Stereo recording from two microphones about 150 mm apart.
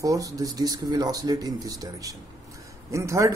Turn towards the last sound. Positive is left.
turn(degrees=-20)  # may be behind; listen again after turning